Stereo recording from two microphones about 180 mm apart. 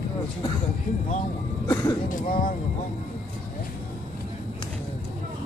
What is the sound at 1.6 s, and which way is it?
Speech, 20° left (ahead or behind).